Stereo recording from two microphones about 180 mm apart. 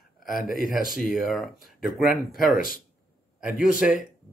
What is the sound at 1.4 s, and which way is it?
Speech, centre (ahead or behind).